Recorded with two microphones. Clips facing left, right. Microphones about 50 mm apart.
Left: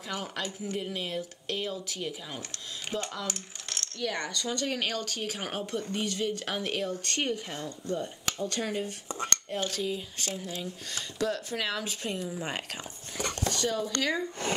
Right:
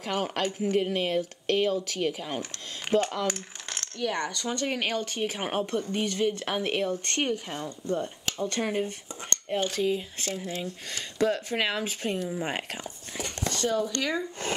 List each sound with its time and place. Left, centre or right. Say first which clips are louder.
0.0 s speech: right 6 dB; right
13.4 s a sound: right 2 dB; right
13.7 s speech: right 6 dB; right